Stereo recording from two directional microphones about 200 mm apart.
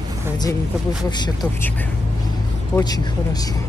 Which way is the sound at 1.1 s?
20° left (ahead or behind).